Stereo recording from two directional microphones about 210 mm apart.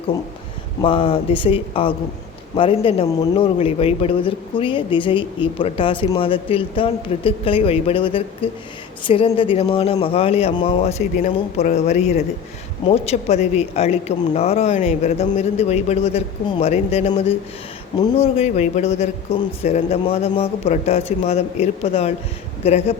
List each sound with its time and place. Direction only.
0.8 s a man's voice: 25° left (ahead or behind)